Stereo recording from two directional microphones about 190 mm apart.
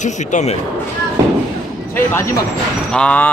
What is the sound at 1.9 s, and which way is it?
Speech, 15° left (ahead or behind).